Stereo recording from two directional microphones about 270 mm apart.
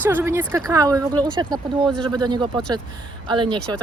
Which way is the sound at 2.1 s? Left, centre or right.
Centre.